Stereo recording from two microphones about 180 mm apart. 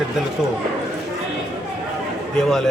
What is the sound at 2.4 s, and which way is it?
Speech, centre (ahead or behind).